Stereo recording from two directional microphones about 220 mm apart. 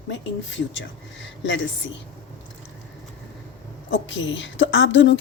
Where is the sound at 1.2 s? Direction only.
55° left (ahead or behind).